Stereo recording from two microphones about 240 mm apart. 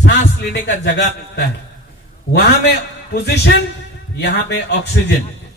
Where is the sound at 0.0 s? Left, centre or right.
Left.